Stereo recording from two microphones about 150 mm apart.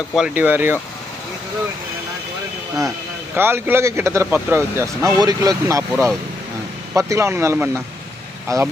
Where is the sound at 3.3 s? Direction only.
15° right (ahead or behind).